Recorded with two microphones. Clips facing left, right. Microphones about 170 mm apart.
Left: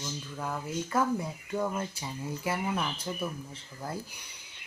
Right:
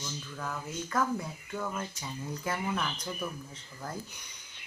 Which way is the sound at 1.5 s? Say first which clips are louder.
Left 5 dB; 20° left (ahead or behind).